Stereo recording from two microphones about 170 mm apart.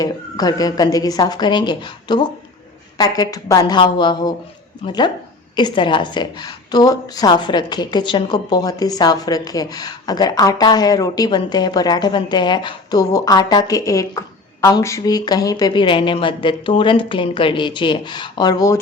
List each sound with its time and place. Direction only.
0.0 s a woman's voice: 20° left (ahead or behind)